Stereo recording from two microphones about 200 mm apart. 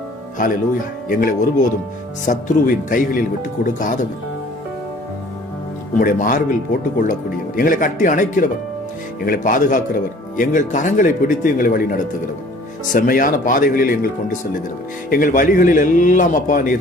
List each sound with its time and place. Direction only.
1.1 s speech: 45° left (ahead or behind)
6.0 s a man's voice: 45° left (ahead or behind)
15.1 s a man's voice: 40° left (ahead or behind)